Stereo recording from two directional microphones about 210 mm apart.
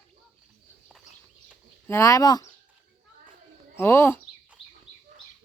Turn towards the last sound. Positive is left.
turn(degrees=25)  # may be behind; listen again after turning